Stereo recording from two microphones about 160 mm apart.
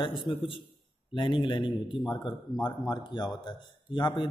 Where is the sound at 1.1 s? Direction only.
30° left (ahead or behind).